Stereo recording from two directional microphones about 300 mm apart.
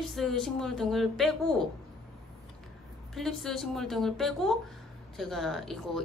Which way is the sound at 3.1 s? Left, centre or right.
Centre.